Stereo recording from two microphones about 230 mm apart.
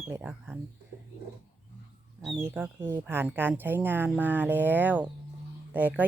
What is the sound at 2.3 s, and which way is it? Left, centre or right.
Speech, centre.